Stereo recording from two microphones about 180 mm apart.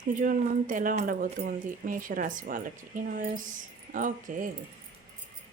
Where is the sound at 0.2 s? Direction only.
45° right (ahead or behind).